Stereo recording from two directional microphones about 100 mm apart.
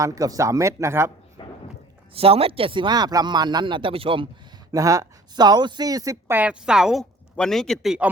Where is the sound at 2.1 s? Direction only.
75° right (ahead or behind).